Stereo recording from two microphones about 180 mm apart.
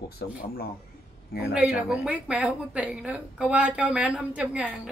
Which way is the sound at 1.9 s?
5° right (ahead or behind).